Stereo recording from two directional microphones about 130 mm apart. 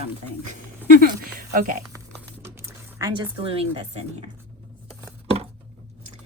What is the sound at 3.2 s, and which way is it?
Speech, 50° right (ahead or behind).